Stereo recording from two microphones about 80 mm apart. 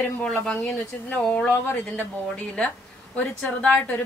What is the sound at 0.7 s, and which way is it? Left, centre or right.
Speech, left.